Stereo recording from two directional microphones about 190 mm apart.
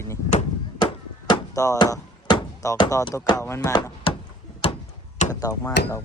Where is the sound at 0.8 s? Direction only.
25° left (ahead or behind).